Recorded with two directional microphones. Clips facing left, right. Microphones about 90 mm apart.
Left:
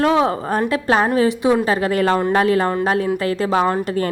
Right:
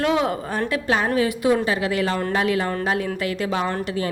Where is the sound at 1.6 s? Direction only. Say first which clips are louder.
Left 5 dB; 40° left (ahead or behind).